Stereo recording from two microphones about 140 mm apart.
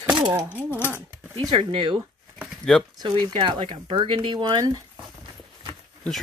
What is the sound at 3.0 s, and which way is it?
Speech, 35° right (ahead or behind).